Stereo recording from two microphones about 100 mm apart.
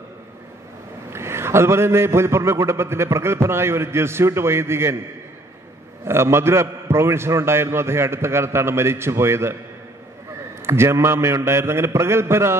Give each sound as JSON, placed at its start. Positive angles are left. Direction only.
{"t": 1.1, "sound": "a man's voice", "side_deg": -25}
{"t": 6.0, "sound": "a man's voice", "side_deg": -25}
{"t": 10.6, "sound": "a man's voice", "side_deg": -25}